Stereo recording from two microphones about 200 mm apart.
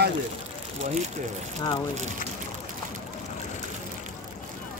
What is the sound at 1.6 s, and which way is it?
Speech, 20° left (ahead or behind).